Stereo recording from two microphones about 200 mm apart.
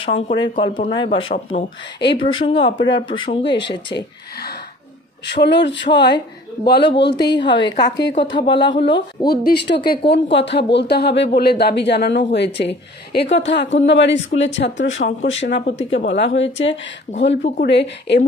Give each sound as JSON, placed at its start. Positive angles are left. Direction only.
{"t": 0.0, "sound": "speech", "side_deg": 25}
{"t": 3.4, "sound": "speech", "side_deg": 60}
{"t": 7.4, "sound": "speech", "side_deg": 25}
{"t": 8.5, "sound": "speech", "side_deg": 65}
{"t": 8.7, "sound": "speech", "side_deg": 25}
{"t": 9.2, "sound": "speech", "side_deg": 50}